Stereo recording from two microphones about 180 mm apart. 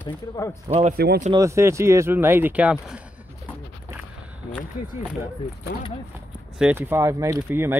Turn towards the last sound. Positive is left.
turn(degrees=-10)  # may be behind; listen again after turning